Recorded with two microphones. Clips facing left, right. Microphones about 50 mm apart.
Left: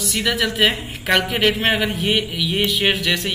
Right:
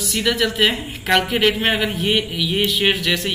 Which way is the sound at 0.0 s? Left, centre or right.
Centre.